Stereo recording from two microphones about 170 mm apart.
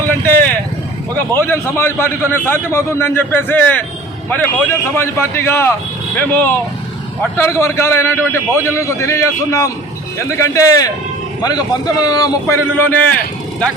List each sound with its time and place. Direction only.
0.3 s vehicle: 10° left (ahead or behind)
1.1 s a man's voice: 15° left (ahead or behind)
12.7 s a man's voice: 10° left (ahead or behind)